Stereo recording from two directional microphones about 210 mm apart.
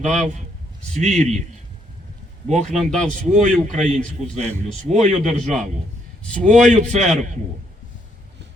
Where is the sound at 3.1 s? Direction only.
35° right (ahead or behind).